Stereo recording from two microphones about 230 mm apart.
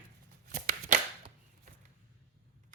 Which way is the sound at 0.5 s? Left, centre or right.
Right.